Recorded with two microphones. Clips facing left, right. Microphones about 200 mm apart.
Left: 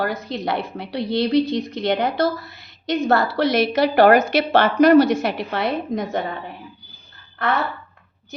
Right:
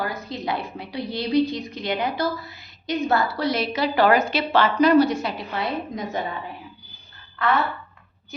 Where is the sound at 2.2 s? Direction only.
80° left.